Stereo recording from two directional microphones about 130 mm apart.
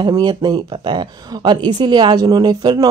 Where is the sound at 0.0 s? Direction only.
35° right (ahead or behind).